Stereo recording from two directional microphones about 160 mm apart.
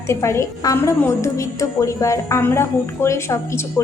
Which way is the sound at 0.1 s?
20° left (ahead or behind).